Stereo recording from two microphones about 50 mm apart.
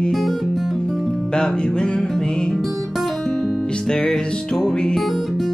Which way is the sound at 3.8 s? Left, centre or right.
Centre.